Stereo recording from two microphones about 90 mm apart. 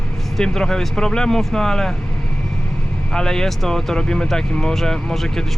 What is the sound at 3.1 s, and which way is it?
Speech, 5° left (ahead or behind).